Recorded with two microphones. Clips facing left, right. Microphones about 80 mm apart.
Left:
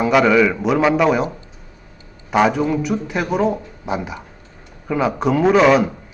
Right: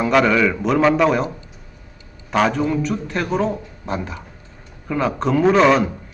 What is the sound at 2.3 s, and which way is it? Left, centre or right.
Speech, centre.